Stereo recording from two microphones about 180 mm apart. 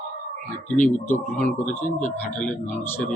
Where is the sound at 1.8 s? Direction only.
45° left (ahead or behind).